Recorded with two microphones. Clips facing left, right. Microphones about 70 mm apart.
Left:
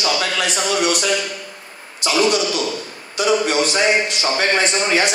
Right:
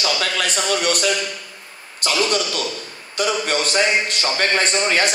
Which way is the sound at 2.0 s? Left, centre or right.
Right.